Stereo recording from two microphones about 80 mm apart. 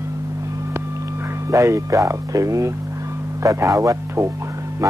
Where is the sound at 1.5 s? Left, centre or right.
Right.